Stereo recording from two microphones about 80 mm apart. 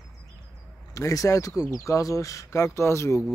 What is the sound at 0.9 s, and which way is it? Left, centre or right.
Speech, left.